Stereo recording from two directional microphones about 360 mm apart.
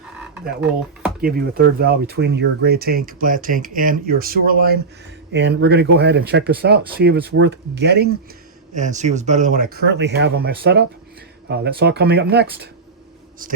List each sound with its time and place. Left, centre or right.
1.2 s speech: right